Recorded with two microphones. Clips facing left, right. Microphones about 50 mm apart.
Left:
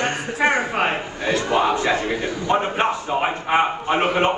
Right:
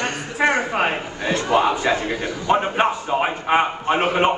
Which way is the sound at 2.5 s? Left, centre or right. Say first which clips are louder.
Right 1 dB; centre.